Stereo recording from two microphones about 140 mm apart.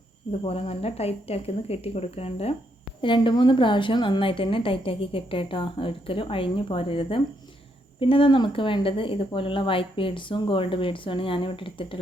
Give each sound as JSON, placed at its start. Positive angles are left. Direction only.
{"t": 0.3, "sound": "a woman's voice", "side_deg": 45}